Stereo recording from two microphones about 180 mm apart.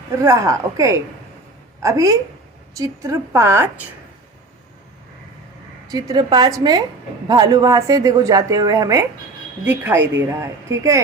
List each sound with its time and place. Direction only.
0.2 s a woman's voice: 20° right (ahead or behind)
5.9 s a woman's voice: 20° right (ahead or behind)